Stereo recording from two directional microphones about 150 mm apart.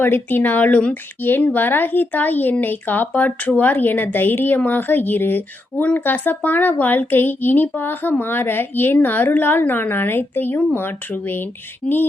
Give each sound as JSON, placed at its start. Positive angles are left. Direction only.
{"t": 0.0, "sound": "speech", "side_deg": 15}